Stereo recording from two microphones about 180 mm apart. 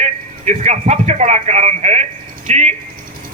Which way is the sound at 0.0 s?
40° right (ahead or behind).